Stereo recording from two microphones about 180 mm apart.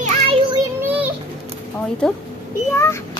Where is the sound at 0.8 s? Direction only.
10° right (ahead or behind).